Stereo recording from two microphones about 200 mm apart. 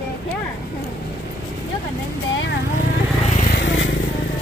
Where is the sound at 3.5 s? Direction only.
65° left (ahead or behind).